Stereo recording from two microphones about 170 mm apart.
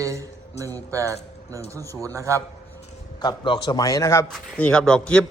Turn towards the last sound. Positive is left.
turn(degrees=5)  # may be behind; listen again after turning